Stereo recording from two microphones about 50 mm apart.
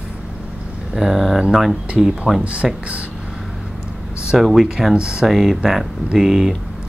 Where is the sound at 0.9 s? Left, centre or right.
Centre.